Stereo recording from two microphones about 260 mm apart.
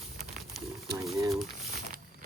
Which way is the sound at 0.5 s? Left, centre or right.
Centre.